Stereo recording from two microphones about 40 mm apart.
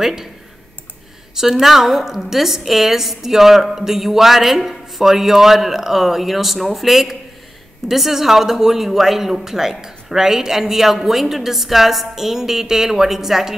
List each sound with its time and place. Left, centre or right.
0.0 s a woman's voice: centre
1.3 s a woman's voice: centre